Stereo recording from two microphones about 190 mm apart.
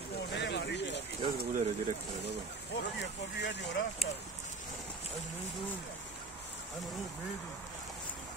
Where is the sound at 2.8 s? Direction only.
65° left (ahead or behind).